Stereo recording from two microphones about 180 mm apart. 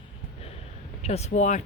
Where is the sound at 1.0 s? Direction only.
35° left (ahead or behind).